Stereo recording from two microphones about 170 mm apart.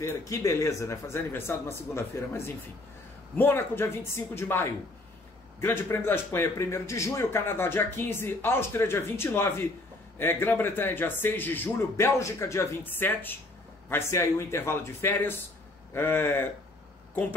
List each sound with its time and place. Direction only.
0.0 s a man's voice: 20° left (ahead or behind)